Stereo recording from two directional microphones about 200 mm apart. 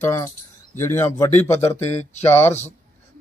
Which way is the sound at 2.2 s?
10° left (ahead or behind).